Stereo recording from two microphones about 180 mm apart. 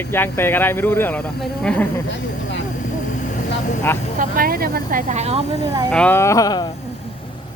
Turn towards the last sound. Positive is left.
turn(degrees=20)  # may be behind; listen again after turning